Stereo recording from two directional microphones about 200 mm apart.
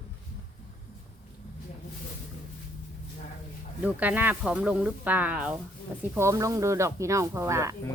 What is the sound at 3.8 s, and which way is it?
Speech, 10° right (ahead or behind).